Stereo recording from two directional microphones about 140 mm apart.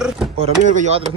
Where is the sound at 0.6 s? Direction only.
65° right (ahead or behind).